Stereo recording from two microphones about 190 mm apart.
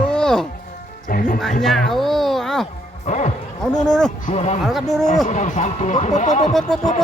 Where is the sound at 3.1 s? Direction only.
35° left (ahead or behind).